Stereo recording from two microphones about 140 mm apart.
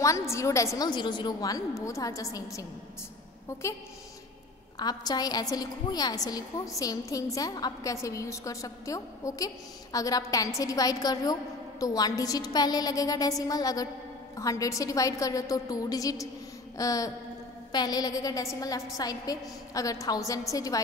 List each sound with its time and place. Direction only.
0.0 s a woman's voice: 20° left (ahead or behind)
4.7 s a woman's voice: 30° left (ahead or behind)